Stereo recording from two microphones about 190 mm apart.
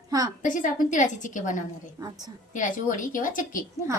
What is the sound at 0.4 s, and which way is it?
A woman's voice, 45° left (ahead or behind).